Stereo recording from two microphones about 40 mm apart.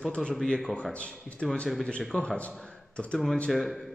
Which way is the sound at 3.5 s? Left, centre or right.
Centre.